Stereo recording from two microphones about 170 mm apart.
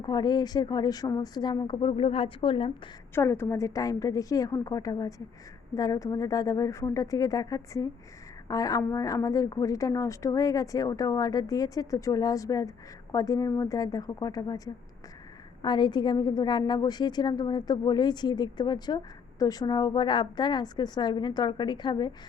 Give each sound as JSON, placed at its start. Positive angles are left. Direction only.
{"t": 0.0, "sound": "speech", "side_deg": 25}
{"t": 3.2, "sound": "speech", "side_deg": 15}